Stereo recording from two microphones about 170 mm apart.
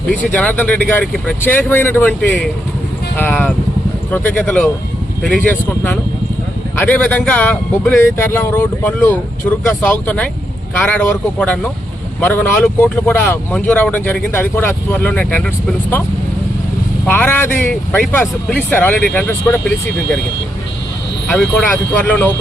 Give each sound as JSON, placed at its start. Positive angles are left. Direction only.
{"t": 0.3, "sound": "speech", "side_deg": 10}
{"t": 17.1, "sound": "speech", "side_deg": 10}
{"t": 21.2, "sound": "speech", "side_deg": 0}